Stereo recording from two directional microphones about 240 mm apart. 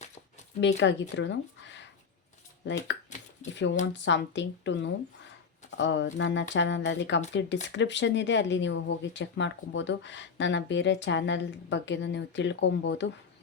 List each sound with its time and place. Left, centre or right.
0.8 s speech: left